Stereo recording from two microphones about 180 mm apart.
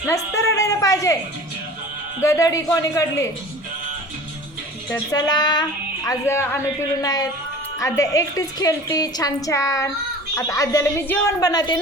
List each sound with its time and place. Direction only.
0.1 s a woman's voice: 15° left (ahead or behind)
2.2 s a woman's voice: 15° left (ahead or behind)
4.9 s a woman's voice: 20° left (ahead or behind)